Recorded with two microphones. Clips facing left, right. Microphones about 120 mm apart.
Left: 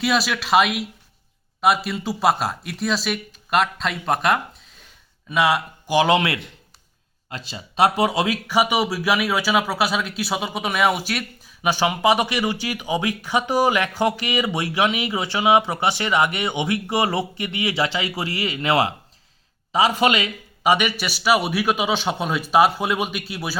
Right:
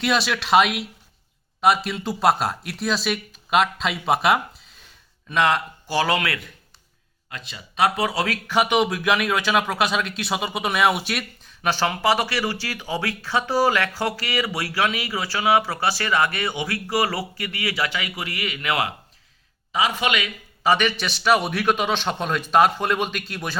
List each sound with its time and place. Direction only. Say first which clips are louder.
0.0 s speech: left 1 dB; centre (ahead or behind)
5.3 s a man's voice: left 1 dB; 5° left (ahead or behind)
11.6 s speech: left 2 dB; 15° left (ahead or behind); by 20.3 s 35° left (ahead or behind)
20.7 s a man's voice: left 1 dB; 10° left (ahead or behind)